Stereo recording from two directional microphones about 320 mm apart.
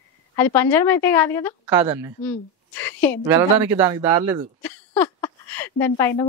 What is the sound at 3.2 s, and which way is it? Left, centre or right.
A man's voice, centre.